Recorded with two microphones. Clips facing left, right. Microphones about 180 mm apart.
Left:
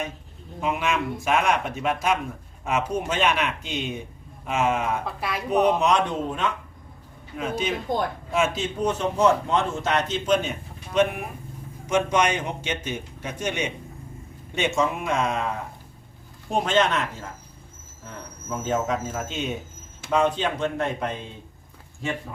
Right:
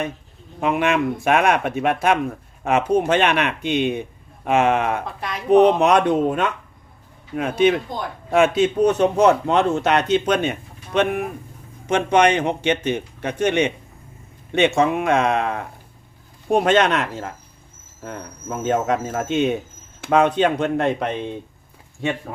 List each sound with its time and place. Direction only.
0.6 s a man's voice: 60° right (ahead or behind)